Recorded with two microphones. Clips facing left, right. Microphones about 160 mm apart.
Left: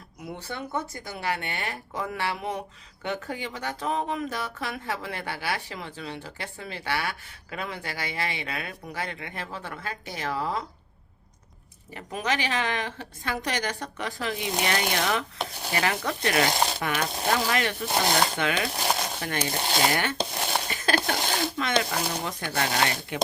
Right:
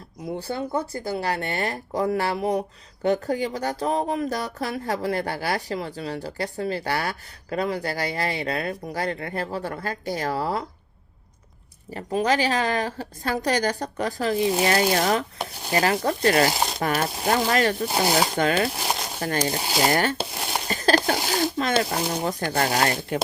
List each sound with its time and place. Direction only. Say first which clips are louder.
0.3 s speech: right 6 dB; 30° right (ahead or behind)
11.9 s speech: right 7 dB; 35° right (ahead or behind)
17.8 s speech: right 3 dB; 5° right (ahead or behind)
18.3 s speech: right 5 dB; 40° right (ahead or behind)
19.5 s speech: right 1 dB; 5° right (ahead or behind)
19.9 s speech: right 5 dB; 40° right (ahead or behind)
20.1 s a sound: even; 5° right (ahead or behind)
20.7 s a sound: right 9 dB; 40° right (ahead or behind)
21.6 s speech: right 3 dB; 35° right (ahead or behind)